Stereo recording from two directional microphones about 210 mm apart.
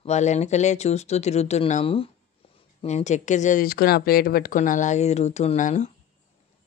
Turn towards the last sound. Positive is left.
turn(degrees=35)  # may be behind; listen again after turning